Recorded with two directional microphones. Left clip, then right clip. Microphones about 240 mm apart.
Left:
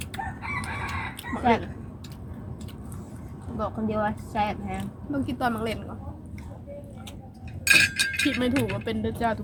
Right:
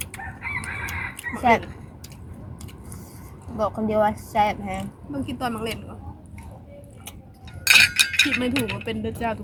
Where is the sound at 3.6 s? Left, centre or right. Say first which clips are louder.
Right 7 dB; right.